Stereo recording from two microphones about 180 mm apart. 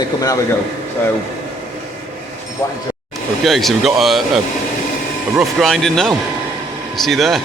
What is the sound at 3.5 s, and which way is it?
A man's voice, centre (ahead or behind).